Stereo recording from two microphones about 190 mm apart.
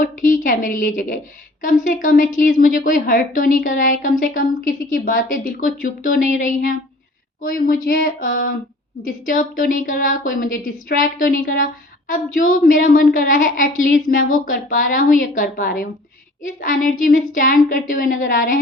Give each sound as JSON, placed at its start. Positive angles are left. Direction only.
{"t": 0.0, "sound": "a woman's voice", "side_deg": 45}